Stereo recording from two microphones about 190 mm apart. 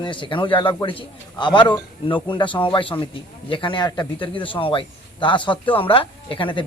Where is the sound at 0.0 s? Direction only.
25° left (ahead or behind).